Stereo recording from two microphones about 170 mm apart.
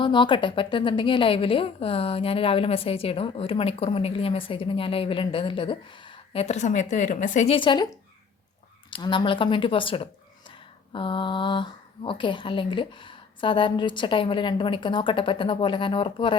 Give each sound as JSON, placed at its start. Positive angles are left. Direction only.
{"t": 0.0, "sound": "a woman's voice", "side_deg": 30}
{"t": 8.9, "sound": "a woman's voice", "side_deg": 30}